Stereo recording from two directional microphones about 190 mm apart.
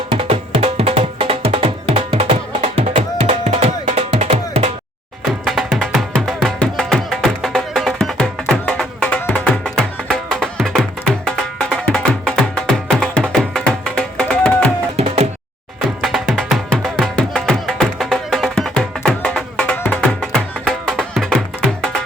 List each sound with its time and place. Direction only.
0.1 s music: 30° right (ahead or behind)
5.5 s music: centre (ahead or behind)
14.9 s music: 35° right (ahead or behind)
16.0 s music: centre (ahead or behind)